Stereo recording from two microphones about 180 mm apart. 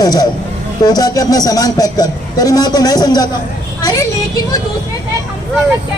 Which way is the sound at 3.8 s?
20° left (ahead or behind).